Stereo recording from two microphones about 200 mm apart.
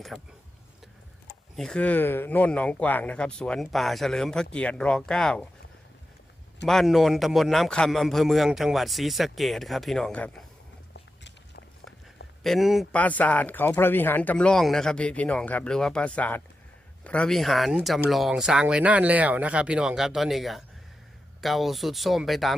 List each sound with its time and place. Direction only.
0.1 s speech: centre (ahead or behind)
1.5 s speech: 5° left (ahead or behind)
6.7 s speech: centre (ahead or behind)
10.9 s biting: 60° left (ahead or behind)
12.4 s speech: centre (ahead or behind)